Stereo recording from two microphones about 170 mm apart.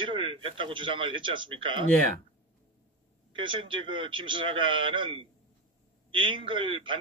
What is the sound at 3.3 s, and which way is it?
Speech, 30° right (ahead or behind).